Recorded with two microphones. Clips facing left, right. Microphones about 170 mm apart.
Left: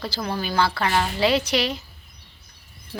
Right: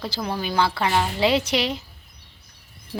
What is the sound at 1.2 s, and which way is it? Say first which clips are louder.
Speech: even; 20° right (ahead or behind).